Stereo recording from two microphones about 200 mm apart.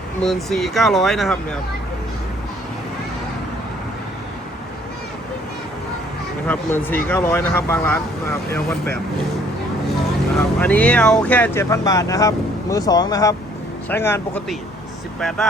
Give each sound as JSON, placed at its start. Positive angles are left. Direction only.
{"t": 0.2, "sound": "speech", "side_deg": 0}
{"t": 6.5, "sound": "speech", "side_deg": 10}
{"t": 10.6, "sound": "speech", "side_deg": 5}